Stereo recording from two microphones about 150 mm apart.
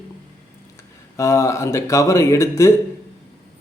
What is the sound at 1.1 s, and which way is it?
Speech, 20° left (ahead or behind).